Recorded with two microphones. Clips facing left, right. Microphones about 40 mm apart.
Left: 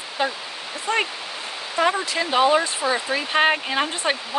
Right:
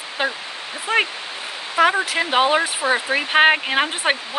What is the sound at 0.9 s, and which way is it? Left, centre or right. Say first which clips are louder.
Speech: right 3 dB; centre.